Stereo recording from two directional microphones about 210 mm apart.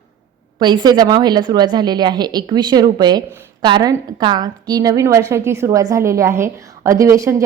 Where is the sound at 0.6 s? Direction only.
20° right (ahead or behind).